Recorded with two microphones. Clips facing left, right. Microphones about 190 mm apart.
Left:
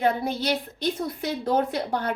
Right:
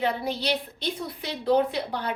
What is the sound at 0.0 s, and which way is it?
A woman's voice, 50° left (ahead or behind).